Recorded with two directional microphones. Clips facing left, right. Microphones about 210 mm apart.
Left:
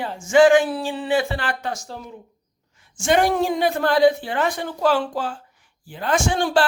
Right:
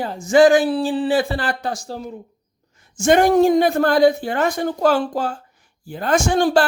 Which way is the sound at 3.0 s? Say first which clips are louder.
Right 5 dB; 45° right (ahead or behind).